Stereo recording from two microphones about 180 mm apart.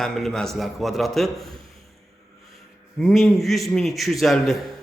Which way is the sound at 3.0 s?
Centre (ahead or behind).